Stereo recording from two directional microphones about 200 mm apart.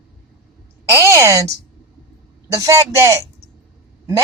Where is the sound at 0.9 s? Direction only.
15° right (ahead or behind).